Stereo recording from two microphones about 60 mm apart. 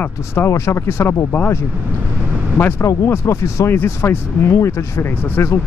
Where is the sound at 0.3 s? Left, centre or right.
Left.